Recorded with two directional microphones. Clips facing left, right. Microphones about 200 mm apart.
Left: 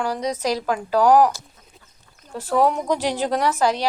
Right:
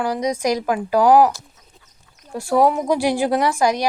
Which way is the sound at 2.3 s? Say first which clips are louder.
Right 3 dB; 10° right (ahead or behind).